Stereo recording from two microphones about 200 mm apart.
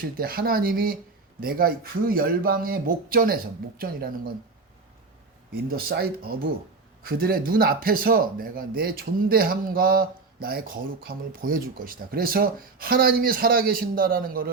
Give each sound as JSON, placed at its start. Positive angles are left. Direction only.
{"t": 0.2, "sound": "speech", "side_deg": -45}
{"t": 5.7, "sound": "speech", "side_deg": -50}